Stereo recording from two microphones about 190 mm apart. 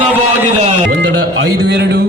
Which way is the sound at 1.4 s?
60° right (ahead or behind).